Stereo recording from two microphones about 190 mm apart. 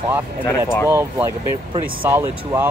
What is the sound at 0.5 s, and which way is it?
Speech, 10° left (ahead or behind).